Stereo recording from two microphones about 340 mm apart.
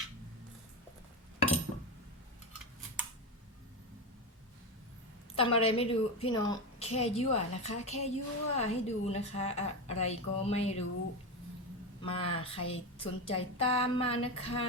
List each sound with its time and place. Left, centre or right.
5.3 s a woman's voice: centre
12.0 s speech: centre